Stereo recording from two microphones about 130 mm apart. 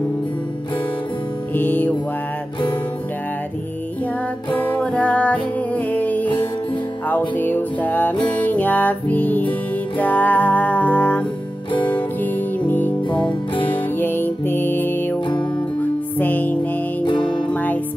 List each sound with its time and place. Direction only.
1.5 s music: 15° left (ahead or behind)
4.6 s music: 10° left (ahead or behind)
12.5 s music: 15° left (ahead or behind)